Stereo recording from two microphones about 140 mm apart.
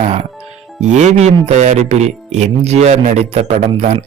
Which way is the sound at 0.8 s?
55° right (ahead or behind).